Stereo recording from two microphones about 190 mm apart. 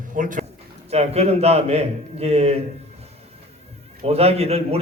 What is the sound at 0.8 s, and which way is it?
A man's voice, 35° right (ahead or behind).